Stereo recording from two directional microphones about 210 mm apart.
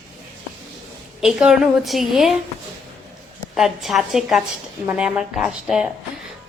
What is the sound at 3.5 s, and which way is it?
A woman's voice, centre (ahead or behind).